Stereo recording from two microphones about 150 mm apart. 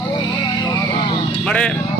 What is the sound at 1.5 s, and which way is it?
Speech, 5° left (ahead or behind).